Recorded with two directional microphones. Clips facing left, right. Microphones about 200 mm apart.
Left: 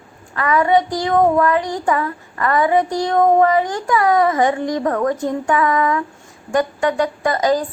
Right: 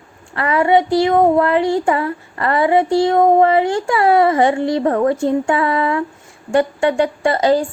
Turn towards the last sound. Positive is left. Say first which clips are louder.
# right 3 dB
turn(degrees=-30)  # may be behind; listen again after turning